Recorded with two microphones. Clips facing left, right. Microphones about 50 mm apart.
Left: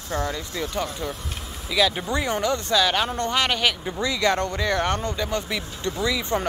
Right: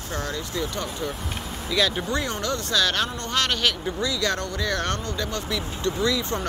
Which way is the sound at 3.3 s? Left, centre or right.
Centre.